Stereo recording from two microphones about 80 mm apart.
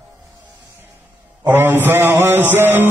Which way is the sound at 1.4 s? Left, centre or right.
Right.